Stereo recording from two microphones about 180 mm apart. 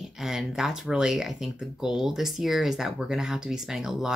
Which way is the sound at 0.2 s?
Centre (ahead or behind).